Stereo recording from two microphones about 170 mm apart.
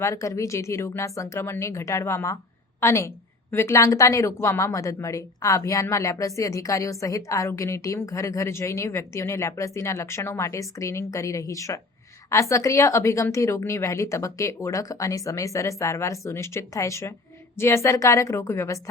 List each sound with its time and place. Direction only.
0.0 s a woman's voice: 20° left (ahead or behind)